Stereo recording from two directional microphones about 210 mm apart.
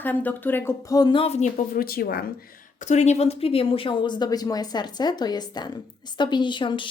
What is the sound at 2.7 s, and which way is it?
Speech, 35° left (ahead or behind).